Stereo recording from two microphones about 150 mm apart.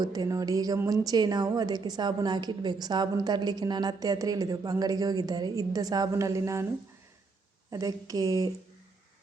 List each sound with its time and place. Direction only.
0.0 s a woman's voice: 25° right (ahead or behind)
7.7 s a woman's voice: 25° right (ahead or behind)